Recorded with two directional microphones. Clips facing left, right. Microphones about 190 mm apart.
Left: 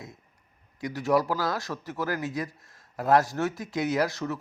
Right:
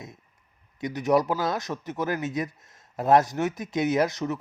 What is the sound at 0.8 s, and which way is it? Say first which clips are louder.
Speech: right 2 dB; 20° right (ahead or behind).